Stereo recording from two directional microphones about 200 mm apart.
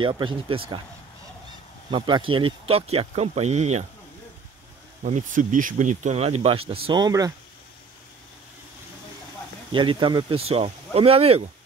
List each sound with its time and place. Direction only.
0.0 s speech: 25° right (ahead or behind)
1.9 s speech: 25° right (ahead or behind)
5.0 s speech: 40° right (ahead or behind); by 7.3 s 15° right (ahead or behind)
9.7 s speech: 25° right (ahead or behind)